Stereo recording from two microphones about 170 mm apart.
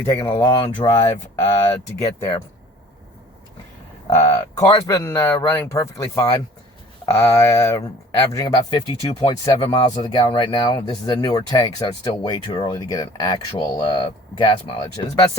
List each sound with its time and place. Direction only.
0.0 s speech: 25° left (ahead or behind)
4.5 s speech: 20° left (ahead or behind)